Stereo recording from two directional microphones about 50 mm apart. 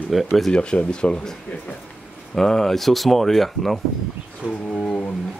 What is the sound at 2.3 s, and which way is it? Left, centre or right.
Speech, centre.